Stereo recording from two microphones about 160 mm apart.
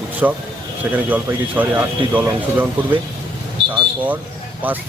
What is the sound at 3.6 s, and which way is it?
Vehicle, 30° right (ahead or behind).